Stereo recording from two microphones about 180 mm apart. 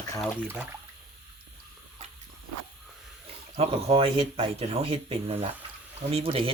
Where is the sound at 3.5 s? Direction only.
35° right (ahead or behind).